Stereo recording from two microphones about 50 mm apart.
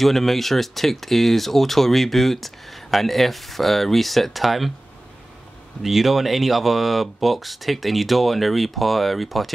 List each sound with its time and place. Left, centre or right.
0.0 s speech: centre
5.8 s speech: centre